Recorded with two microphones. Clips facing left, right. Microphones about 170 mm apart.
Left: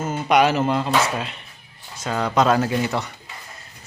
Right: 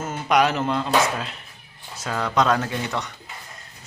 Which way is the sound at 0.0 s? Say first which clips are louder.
Left 2 dB; centre (ahead or behind).